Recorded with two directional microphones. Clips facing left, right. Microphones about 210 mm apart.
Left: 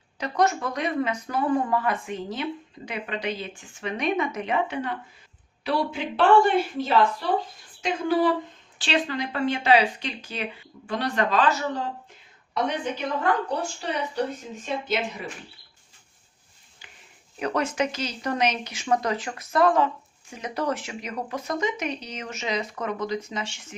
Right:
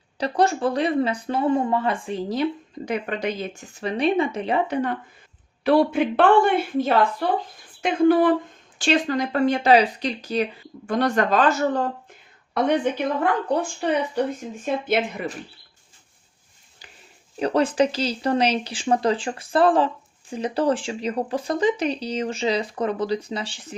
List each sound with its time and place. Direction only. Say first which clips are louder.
0.2 s speech: right 3 dB; 30° right (ahead or behind)
5.6 s a woman's voice: right 9 dB; 55° right (ahead or behind)
8.8 s a woman's voice: right 5 dB; 45° right (ahead or behind)
14.6 s speech: right 5 dB; 55° right (ahead or behind)
16.8 s a sound: right 3 dB; 40° right (ahead or behind)
17.4 s speech: right 6 dB; 30° right (ahead or behind)